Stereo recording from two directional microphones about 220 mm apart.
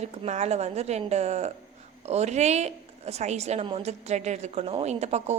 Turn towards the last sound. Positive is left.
turn(degrees=-30)  # may be behind; listen again after turning